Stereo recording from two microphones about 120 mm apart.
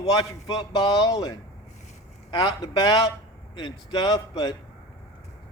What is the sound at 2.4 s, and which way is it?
A man's voice, 35° left (ahead or behind).